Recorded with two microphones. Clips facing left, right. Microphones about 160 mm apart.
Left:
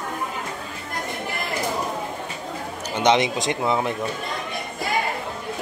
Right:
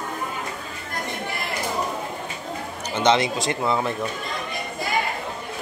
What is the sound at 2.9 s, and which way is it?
Speech, 15° left (ahead or behind).